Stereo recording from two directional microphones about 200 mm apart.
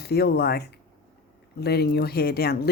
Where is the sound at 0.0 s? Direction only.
50° left (ahead or behind).